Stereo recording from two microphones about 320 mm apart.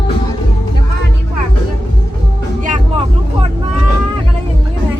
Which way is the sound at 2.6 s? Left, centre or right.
Right.